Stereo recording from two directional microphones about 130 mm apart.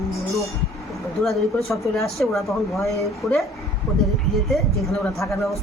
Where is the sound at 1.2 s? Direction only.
Centre (ahead or behind).